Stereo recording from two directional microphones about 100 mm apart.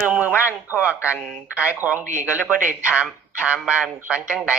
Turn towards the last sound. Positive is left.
turn(degrees=-10)  # may be behind; listen again after turning